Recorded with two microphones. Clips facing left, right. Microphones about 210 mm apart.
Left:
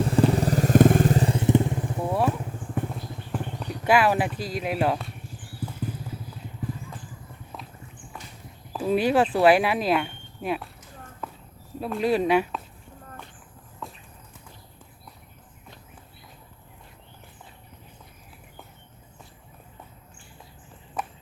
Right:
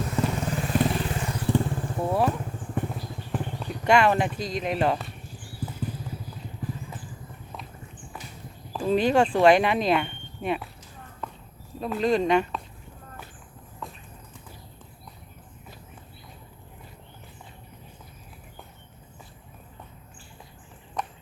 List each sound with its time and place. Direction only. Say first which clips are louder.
0.0 s vehicle: left 6 dB; 30° left (ahead or behind)
2.0 s vehicle: right 1 dB; centre (ahead or behind)
8.7 s speech: even; 5° left (ahead or behind)
11.2 s walk: even; 5° left (ahead or behind)
11.8 s speech: even; 5° left (ahead or behind)